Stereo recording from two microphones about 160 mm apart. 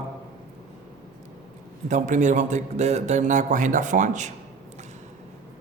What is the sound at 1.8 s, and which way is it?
A man's voice, 50° right (ahead or behind).